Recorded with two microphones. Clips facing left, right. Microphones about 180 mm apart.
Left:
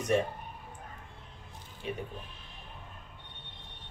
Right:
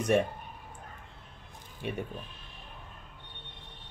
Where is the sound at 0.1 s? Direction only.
60° right (ahead or behind).